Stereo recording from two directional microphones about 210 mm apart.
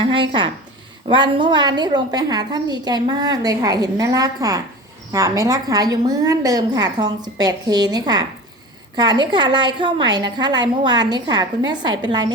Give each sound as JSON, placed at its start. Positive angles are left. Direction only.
{"t": 0.0, "sound": "a woman's voice", "side_deg": -25}